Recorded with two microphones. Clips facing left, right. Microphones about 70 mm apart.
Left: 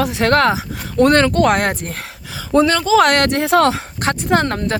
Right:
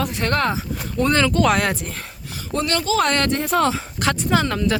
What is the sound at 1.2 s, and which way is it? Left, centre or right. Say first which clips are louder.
Speech: left 3 dB; left.